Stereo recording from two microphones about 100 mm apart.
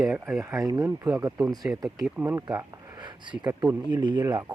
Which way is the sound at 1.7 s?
15° right (ahead or behind).